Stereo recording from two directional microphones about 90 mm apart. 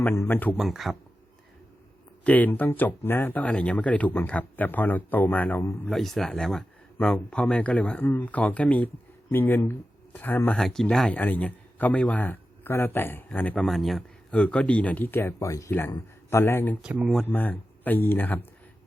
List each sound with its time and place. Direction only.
0.1 s a man's voice: 30° left (ahead or behind)
0.5 s speech: centre (ahead or behind)
2.2 s a man's voice: 20° left (ahead or behind)
5.9 s speech: centre (ahead or behind); by 10.6 s 20° left (ahead or behind)
10.6 s speech: 5° left (ahead or behind)
11.1 s a man's voice: 15° left (ahead or behind)
13.6 s speech: centre (ahead or behind)
14.3 s a man's voice: 15° left (ahead or behind)
16.8 s speech: 15° right (ahead or behind)
17.2 s a man's voice: 20° left (ahead or behind)